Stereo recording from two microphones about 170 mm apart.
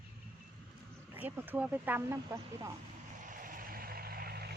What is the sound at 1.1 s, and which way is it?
Speech, 10° right (ahead or behind).